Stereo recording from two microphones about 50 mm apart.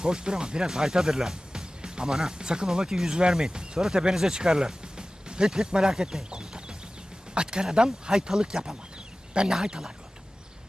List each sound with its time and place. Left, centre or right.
0.0 s speech: centre